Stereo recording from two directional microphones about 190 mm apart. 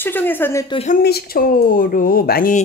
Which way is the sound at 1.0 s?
55° left (ahead or behind).